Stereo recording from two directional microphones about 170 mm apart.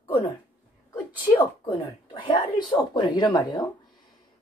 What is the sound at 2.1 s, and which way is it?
Speech, 30° left (ahead or behind).